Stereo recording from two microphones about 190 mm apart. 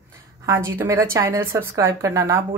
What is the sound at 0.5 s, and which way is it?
Speech, 15° right (ahead or behind).